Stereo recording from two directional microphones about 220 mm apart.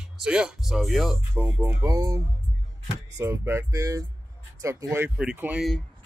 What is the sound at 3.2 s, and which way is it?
Speech, 10° right (ahead or behind).